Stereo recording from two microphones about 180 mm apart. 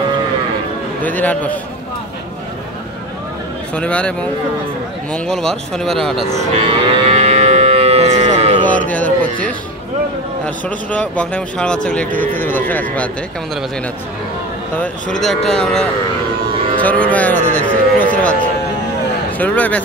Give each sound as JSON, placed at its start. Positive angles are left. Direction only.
{"t": 1.0, "sound": "a man's voice", "side_deg": 10}
{"t": 3.7, "sound": "a man's voice", "side_deg": 5}
{"t": 6.6, "sound": "livestock", "side_deg": -35}
{"t": 8.6, "sound": "speech", "side_deg": 10}
{"t": 10.4, "sound": "a man's voice", "side_deg": 5}
{"t": 15.1, "sound": "a man's voice", "side_deg": 0}
{"t": 19.3, "sound": "a man's voice", "side_deg": 10}